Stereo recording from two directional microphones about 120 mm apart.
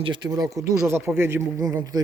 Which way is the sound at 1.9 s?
35° right (ahead or behind).